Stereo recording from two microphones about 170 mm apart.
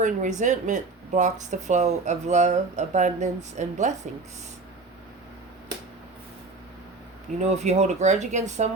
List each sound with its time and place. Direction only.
0.0 s speech: 45° right (ahead or behind)
7.4 s speech: 40° right (ahead or behind)